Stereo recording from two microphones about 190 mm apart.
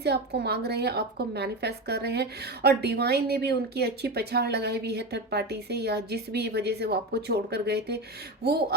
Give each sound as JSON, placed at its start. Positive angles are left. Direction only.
{"t": 0.0, "sound": "a woman's voice", "side_deg": -60}